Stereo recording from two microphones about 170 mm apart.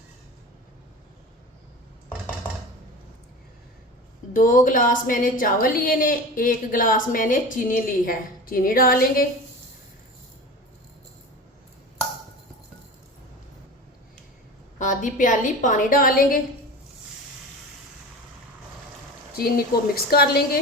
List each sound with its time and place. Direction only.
4.4 s a woman's voice: 50° left (ahead or behind)
14.8 s a woman's voice: 50° left (ahead or behind)
20.1 s a woman's voice: 65° left (ahead or behind)